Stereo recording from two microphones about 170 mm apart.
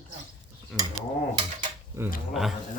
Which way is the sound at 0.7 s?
5° left (ahead or behind).